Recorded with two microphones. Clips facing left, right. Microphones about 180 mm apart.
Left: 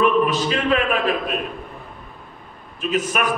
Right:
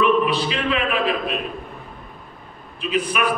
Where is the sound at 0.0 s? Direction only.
45° left (ahead or behind).